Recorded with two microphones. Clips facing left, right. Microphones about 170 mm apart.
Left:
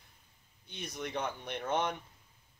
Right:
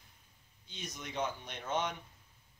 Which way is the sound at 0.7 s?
60° left (ahead or behind).